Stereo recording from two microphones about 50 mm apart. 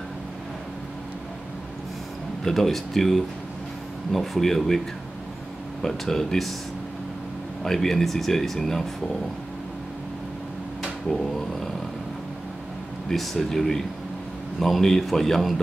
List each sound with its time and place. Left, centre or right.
2.4 s a man's voice: centre
7.6 s speech: centre
11.1 s speech: centre
13.1 s a man's voice: centre